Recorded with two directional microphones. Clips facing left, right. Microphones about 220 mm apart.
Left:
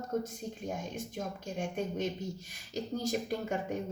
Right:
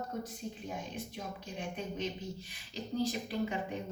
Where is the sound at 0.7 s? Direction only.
45° left (ahead or behind).